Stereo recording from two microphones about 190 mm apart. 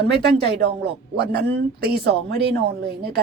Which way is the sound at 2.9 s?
60° right (ahead or behind).